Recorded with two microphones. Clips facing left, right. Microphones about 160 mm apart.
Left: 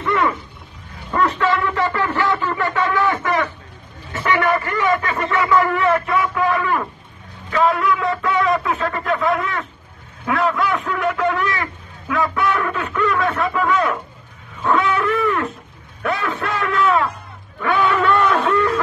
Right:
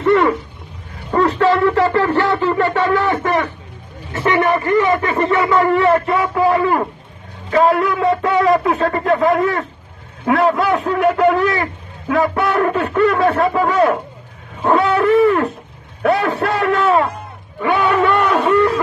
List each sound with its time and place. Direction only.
0.0 s a sound: 40° right (ahead or behind)
1.1 s speech: 35° right (ahead or behind)
7.5 s a man's voice: 50° right (ahead or behind)
8.0 s a man's voice: 35° right (ahead or behind)
18.0 s speech: 15° right (ahead or behind)